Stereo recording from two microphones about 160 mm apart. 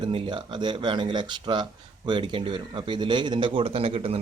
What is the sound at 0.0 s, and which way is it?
Speech, 30° right (ahead or behind).